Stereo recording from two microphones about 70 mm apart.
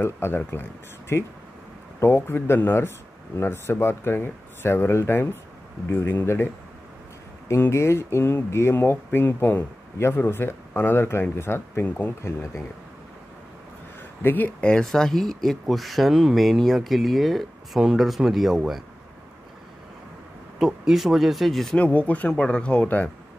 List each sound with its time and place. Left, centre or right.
0.0 s speech: left
14.2 s speech: left
14.6 s speech: centre
20.5 s speech: centre
21.7 s speech: left